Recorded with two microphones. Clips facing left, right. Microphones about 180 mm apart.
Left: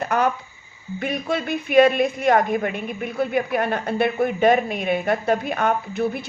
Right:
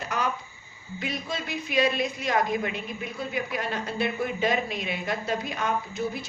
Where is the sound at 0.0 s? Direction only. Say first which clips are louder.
Left 9 dB; 55° left (ahead or behind).